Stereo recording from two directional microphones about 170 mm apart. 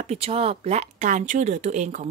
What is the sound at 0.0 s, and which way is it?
A woman's voice, 35° right (ahead or behind).